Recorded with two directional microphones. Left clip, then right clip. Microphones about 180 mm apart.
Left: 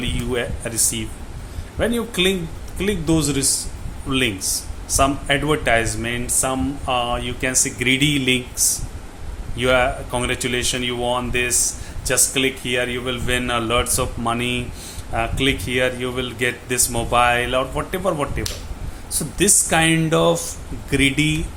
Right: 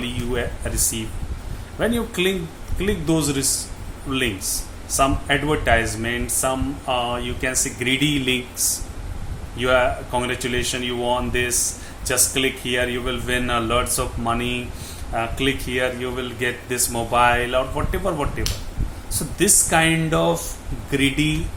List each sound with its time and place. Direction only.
0.0 s a man's voice: 25° left (ahead or behind)